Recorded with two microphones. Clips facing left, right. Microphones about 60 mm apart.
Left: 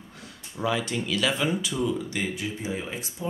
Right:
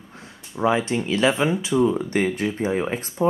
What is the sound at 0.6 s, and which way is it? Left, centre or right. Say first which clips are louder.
Speech: right 6 dB; right.